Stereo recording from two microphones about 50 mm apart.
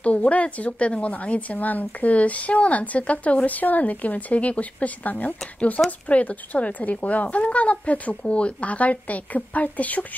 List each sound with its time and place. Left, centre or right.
0.0 s a woman's voice: left